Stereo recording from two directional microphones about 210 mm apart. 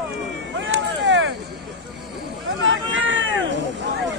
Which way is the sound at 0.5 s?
60° right (ahead or behind).